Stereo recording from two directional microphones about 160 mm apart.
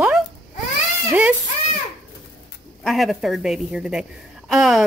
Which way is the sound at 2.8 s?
Centre (ahead or behind).